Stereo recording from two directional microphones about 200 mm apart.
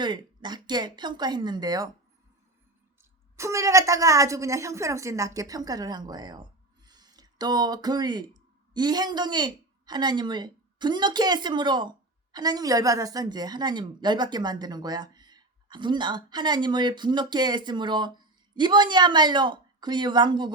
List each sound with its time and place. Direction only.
0.0 s a woman's voice: 20° right (ahead or behind)
3.0 s a woman's voice: 15° right (ahead or behind)